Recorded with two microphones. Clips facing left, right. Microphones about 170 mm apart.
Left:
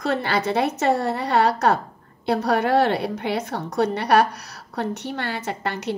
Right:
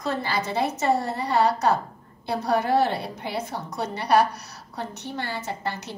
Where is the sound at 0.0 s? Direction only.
70° left (ahead or behind).